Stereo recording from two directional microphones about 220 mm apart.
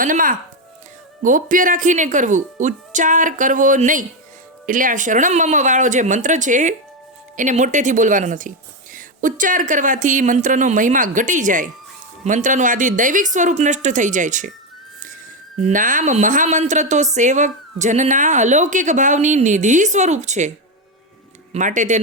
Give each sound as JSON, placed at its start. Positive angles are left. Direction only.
{"t": 0.0, "sound": "speech", "side_deg": -40}
{"t": 21.5, "sound": "speech", "side_deg": -35}